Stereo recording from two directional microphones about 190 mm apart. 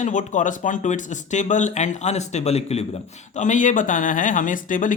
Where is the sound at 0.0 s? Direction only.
40° left (ahead or behind).